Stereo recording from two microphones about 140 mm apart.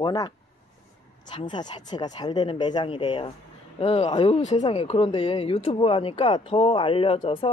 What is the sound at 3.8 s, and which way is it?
Speech, 50° left (ahead or behind).